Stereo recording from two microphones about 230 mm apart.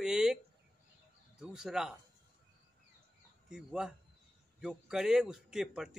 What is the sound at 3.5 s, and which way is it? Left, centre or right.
A man's voice, centre.